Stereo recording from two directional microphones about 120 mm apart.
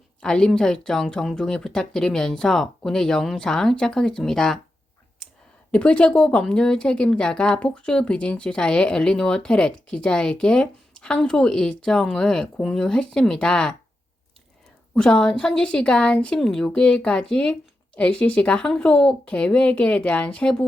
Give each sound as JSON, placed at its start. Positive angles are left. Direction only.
{"t": 0.2, "sound": "speech", "side_deg": 5}
{"t": 5.7, "sound": "a woman's voice", "side_deg": 10}
{"t": 14.9, "sound": "a woman's voice", "side_deg": 10}